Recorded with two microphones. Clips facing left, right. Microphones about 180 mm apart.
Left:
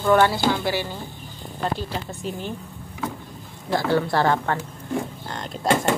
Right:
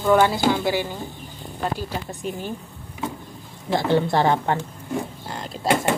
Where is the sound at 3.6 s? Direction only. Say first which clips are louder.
Right 1 dB; 20° right (ahead or behind).